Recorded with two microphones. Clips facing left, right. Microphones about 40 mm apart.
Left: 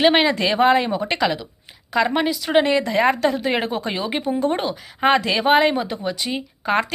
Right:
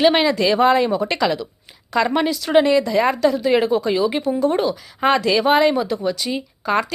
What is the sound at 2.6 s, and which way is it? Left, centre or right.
A woman's voice, left.